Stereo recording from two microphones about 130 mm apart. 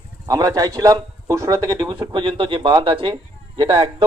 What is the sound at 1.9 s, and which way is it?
Speech, 40° right (ahead or behind).